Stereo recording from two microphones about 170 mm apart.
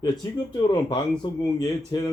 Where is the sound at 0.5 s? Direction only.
25° left (ahead or behind).